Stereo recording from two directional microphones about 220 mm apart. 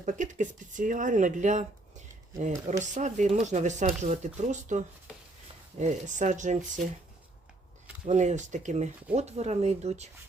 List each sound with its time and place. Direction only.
0.0 s speech: 35° right (ahead or behind)
8.0 s speech: 30° right (ahead or behind)